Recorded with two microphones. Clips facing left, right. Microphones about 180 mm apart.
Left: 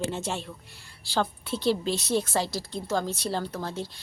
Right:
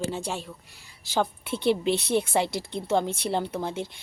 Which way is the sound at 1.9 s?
60° right (ahead or behind).